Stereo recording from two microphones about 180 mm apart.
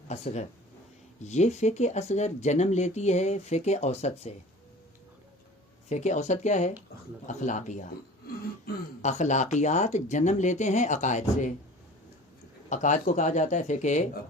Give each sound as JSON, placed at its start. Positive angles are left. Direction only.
{"t": 0.1, "sound": "speech", "side_deg": 35}
{"t": 5.9, "sound": "speech", "side_deg": 40}
{"t": 9.0, "sound": "speech", "side_deg": 40}
{"t": 12.6, "sound": "speech", "side_deg": 45}